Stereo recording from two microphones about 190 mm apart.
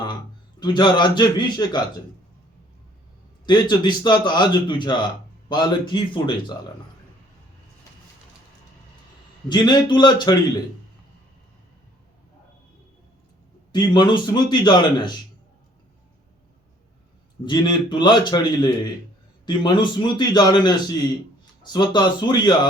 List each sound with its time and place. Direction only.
0.6 s a man's voice: 25° left (ahead or behind)
3.4 s a man's voice: 20° left (ahead or behind)
9.5 s a man's voice: 20° left (ahead or behind)
13.7 s a man's voice: 20° left (ahead or behind)
17.4 s a man's voice: 25° left (ahead or behind)